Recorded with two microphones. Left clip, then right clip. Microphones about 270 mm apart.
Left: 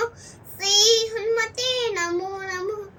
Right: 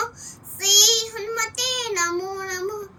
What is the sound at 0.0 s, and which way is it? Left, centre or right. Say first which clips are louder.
Child singing: left 1 dB; centre.